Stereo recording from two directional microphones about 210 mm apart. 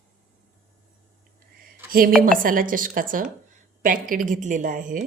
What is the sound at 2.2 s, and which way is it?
Speech, 40° right (ahead or behind).